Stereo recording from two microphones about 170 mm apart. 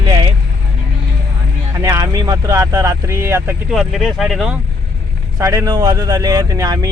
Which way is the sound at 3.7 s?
Centre (ahead or behind).